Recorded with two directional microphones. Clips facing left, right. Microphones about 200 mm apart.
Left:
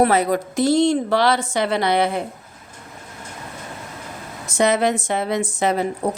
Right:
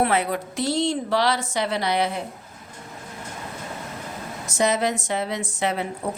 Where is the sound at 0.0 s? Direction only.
40° left (ahead or behind); by 2.2 s 55° left (ahead or behind).